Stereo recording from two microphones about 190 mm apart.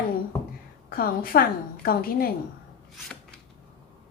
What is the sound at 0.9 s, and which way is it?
A woman's voice, 50° left (ahead or behind).